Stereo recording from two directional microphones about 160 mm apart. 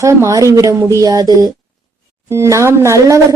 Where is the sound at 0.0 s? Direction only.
20° right (ahead or behind).